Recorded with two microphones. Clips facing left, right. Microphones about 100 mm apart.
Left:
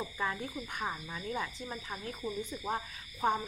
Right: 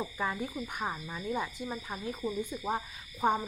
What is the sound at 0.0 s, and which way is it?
Speech, 10° right (ahead or behind).